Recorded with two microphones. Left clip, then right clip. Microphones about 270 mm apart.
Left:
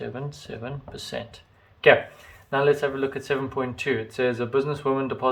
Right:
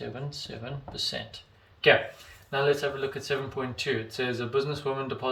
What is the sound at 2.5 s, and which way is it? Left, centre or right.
Speech, centre.